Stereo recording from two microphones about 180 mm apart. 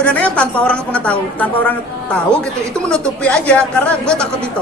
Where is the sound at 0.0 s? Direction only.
5° left (ahead or behind).